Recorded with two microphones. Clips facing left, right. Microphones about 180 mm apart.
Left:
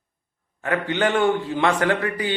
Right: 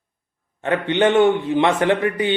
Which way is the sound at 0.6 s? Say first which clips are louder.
Right 4 dB; 25° right (ahead or behind).